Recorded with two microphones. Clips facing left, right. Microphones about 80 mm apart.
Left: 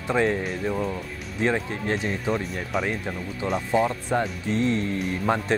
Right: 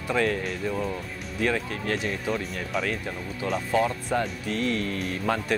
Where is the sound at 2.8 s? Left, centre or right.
Left.